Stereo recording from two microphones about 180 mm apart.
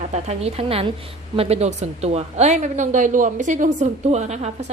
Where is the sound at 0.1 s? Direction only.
35° right (ahead or behind).